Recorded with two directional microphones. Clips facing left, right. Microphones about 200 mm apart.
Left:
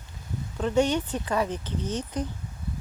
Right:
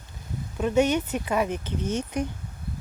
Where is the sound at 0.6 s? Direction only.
20° right (ahead or behind).